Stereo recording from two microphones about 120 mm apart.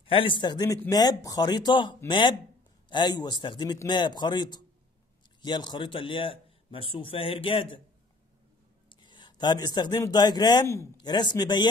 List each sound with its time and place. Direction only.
0.0 s a man's voice: 45° left (ahead or behind)
8.8 s a sound: 40° left (ahead or behind)
10.1 s a man's voice: 35° left (ahead or behind)